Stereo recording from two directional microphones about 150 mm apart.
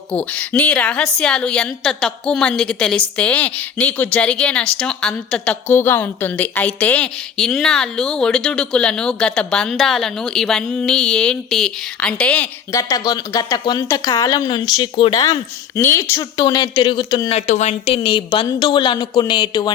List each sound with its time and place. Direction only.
0.1 s a woman's voice: 10° left (ahead or behind)
12.7 s speech: 25° left (ahead or behind)
16.5 s speech: 30° left (ahead or behind)
17.3 s speech: 50° left (ahead or behind); by 19.7 s 30° left (ahead or behind)